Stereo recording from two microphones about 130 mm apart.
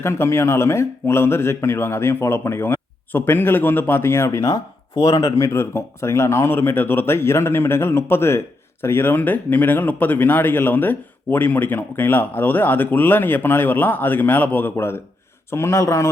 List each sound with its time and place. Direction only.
0.0 s speech: 20° left (ahead or behind)